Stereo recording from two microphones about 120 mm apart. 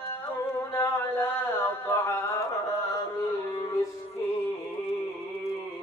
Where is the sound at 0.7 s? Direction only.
20° left (ahead or behind).